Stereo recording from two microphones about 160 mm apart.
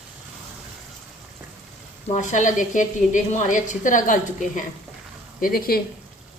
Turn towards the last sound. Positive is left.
turn(degrees=65)  # may be behind; listen again after turning